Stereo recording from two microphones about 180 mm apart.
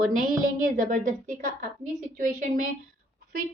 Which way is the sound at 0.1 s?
50° right (ahead or behind).